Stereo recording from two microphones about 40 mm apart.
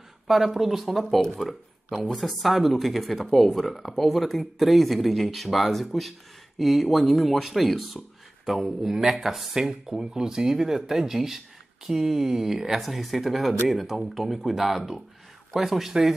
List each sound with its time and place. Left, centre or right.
0.3 s speech: centre